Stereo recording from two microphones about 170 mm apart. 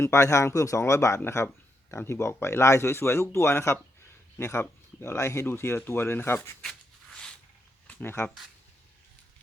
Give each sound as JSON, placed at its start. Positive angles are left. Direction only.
{"t": 0.0, "sound": "speech", "side_deg": 15}
{"t": 7.9, "sound": "speech", "side_deg": 10}